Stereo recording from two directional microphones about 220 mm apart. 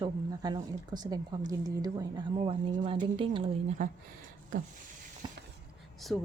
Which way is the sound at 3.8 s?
35° right (ahead or behind).